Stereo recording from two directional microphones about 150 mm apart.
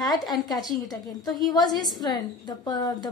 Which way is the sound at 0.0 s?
25° left (ahead or behind).